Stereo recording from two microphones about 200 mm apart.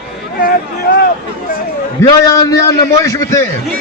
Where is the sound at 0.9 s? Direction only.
50° left (ahead or behind).